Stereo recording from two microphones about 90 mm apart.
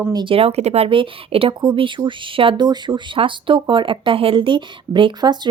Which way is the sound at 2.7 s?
60° right (ahead or behind).